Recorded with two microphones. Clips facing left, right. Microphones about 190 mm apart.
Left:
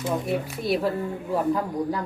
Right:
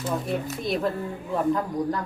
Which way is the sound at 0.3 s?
5° left (ahead or behind).